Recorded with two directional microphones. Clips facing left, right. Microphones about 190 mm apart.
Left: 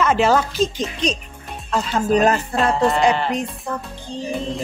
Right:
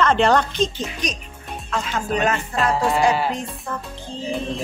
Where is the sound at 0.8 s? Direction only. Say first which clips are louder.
Left 5 dB; 30° left (ahead or behind).